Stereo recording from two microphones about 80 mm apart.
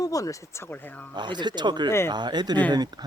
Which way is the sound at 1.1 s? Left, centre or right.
Right.